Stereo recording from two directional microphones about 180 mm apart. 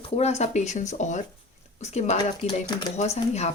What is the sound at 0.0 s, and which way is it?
Speech, 35° left (ahead or behind).